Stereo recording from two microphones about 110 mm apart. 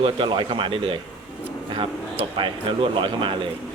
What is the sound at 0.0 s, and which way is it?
Speech, 50° right (ahead or behind).